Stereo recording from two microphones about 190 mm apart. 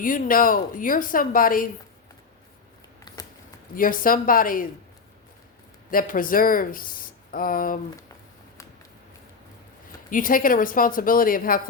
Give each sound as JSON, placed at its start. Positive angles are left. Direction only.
{"t": 0.0, "sound": "speech", "side_deg": 45}
{"t": 3.8, "sound": "speech", "side_deg": 45}
{"t": 5.9, "sound": "speech", "side_deg": 45}
{"t": 10.1, "sound": "speech", "side_deg": 45}